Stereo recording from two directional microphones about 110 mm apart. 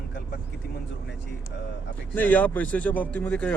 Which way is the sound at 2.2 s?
15° left (ahead or behind).